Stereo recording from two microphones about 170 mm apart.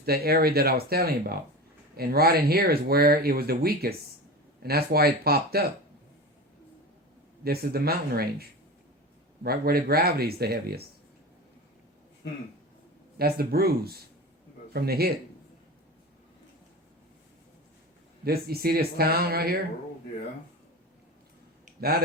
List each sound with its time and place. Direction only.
0.0 s speech: 65° right (ahead or behind)
7.4 s speech: 65° right (ahead or behind)
13.1 s speech: 65° right (ahead or behind)
18.3 s speech: 65° right (ahead or behind)
21.8 s speech: 65° right (ahead or behind)